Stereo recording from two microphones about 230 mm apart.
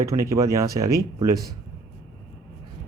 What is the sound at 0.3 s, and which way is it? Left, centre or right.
Speech, centre.